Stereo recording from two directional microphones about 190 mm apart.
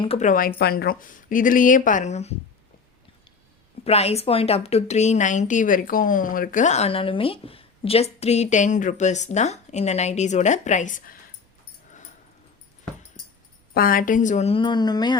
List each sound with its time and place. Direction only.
0.0 s a woman's voice: 35° left (ahead or behind)
3.8 s speech: 35° left (ahead or behind)
13.7 s speech: 45° left (ahead or behind); by 15.2 s 20° left (ahead or behind)